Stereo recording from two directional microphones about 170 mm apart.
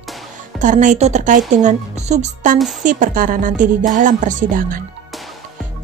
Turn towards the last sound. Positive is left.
turn(degrees=-50)  # may be behind; listen again after turning